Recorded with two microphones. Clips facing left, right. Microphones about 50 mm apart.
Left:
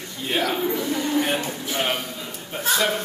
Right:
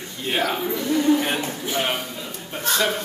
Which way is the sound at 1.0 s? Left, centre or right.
Centre.